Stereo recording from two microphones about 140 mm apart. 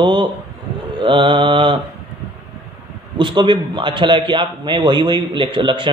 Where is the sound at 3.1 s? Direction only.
35° right (ahead or behind).